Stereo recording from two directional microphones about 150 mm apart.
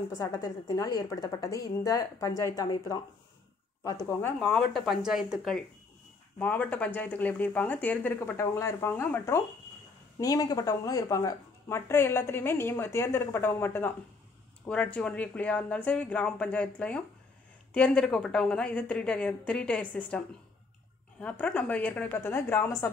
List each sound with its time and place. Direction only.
0.2 s a woman's voice: 25° left (ahead or behind)
4.4 s speech: 5° left (ahead or behind)
6.4 s speech: 10° left (ahead or behind)